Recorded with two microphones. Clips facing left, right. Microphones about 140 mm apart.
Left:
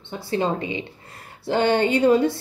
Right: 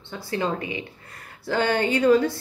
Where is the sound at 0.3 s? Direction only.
25° left (ahead or behind).